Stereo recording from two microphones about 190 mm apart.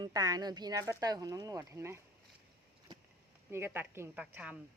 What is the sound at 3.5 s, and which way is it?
A woman's voice, 10° right (ahead or behind).